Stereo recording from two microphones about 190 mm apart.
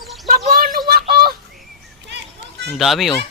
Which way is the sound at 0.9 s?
55° right (ahead or behind).